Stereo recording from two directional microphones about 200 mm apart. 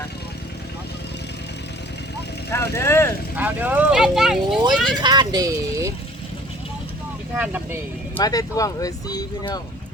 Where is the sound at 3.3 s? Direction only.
10° right (ahead or behind).